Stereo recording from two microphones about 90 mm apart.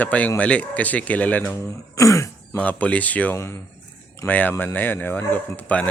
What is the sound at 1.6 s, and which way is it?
Speech, 35° left (ahead or behind).